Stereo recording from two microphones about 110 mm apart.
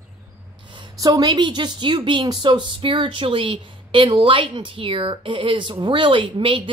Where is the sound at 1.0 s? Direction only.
30° right (ahead or behind).